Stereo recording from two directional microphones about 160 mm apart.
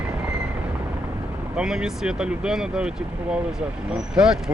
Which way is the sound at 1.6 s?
5° right (ahead or behind).